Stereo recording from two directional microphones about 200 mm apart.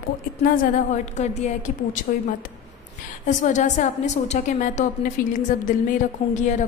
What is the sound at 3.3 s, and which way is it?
A woman's voice, 40° left (ahead or behind).